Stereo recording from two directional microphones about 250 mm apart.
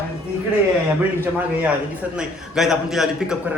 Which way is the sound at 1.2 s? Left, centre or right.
Centre.